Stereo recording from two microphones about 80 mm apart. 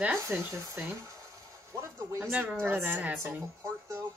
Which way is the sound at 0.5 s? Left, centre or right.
Right.